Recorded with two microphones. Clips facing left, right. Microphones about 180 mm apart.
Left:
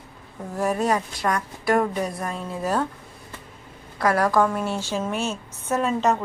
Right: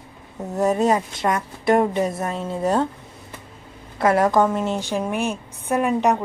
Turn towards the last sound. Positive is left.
turn(degrees=-15)  # may be behind; listen again after turning